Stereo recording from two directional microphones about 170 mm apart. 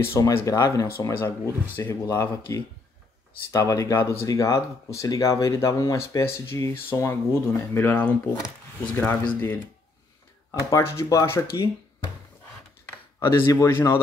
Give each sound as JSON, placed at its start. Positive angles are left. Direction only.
{"t": 0.0, "sound": "speech", "side_deg": 15}
{"t": 10.7, "sound": "speech", "side_deg": 15}
{"t": 13.2, "sound": "speech", "side_deg": 20}